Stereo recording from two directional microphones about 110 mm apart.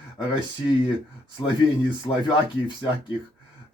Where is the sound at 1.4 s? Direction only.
35° left (ahead or behind).